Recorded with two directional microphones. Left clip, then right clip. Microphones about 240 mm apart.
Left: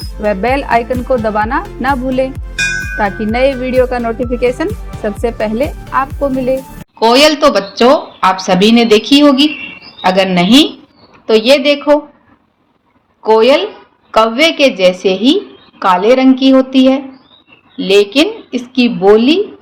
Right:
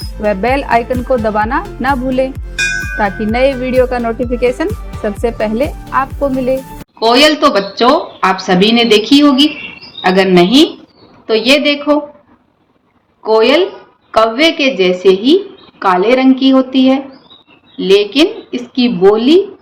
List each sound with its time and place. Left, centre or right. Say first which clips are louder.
0.2 s speech: even; centre
7.0 s a woman's voice: left 1 dB; left
13.2 s a woman's voice: left 1 dB; left